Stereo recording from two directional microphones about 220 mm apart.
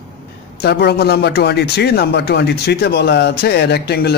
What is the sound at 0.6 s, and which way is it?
Speech, 50° left (ahead or behind).